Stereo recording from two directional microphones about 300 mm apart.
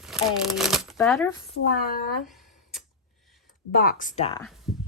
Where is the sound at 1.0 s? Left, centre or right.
Centre.